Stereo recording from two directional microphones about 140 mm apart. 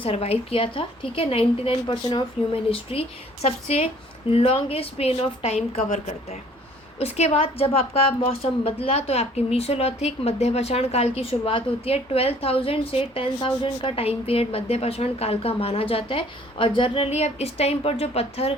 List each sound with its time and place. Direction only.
0.0 s a woman's voice: 45° left (ahead or behind)